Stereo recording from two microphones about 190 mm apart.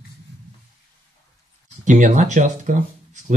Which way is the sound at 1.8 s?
40° right (ahead or behind).